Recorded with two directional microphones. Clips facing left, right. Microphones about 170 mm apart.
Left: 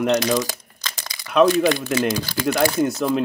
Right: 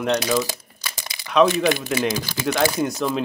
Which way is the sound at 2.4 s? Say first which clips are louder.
Left 2 dB; centre (ahead or behind).